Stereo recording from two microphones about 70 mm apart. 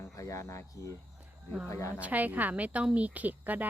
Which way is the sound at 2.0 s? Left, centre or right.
Right.